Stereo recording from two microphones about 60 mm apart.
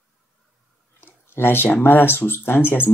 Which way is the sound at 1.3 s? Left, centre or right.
Left.